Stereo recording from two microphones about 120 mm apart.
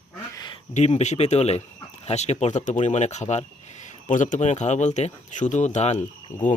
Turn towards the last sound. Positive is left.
turn(degrees=80)